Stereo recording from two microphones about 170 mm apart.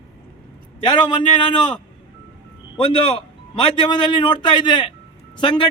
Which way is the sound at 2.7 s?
30° left (ahead or behind).